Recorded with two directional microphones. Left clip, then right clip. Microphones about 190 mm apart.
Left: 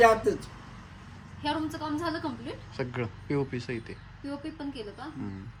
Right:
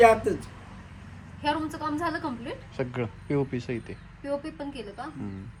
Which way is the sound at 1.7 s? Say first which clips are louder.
Right 3 dB; 35° right (ahead or behind).